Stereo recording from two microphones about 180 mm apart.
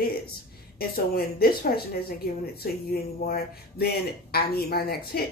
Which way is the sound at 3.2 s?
60° left (ahead or behind).